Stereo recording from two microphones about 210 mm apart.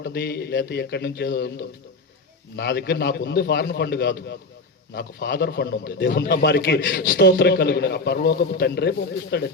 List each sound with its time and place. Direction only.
0.0 s a man's voice: 50° left (ahead or behind)